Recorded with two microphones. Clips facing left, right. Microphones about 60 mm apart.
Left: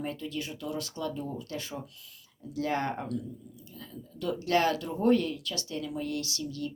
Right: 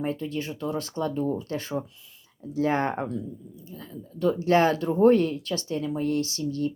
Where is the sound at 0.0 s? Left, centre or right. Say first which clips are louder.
Right 6 dB; right.